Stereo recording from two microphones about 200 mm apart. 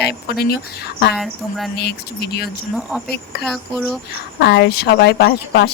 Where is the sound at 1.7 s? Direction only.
55° left (ahead or behind).